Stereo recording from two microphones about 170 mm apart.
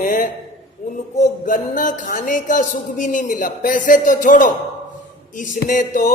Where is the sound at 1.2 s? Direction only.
50° left (ahead or behind).